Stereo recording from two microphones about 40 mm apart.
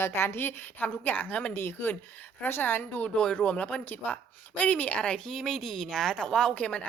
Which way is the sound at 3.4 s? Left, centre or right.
Left.